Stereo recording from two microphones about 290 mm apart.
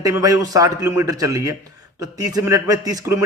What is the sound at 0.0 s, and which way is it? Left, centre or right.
A man's voice, centre.